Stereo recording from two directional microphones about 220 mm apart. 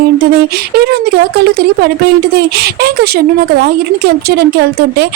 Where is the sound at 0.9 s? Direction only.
45° right (ahead or behind).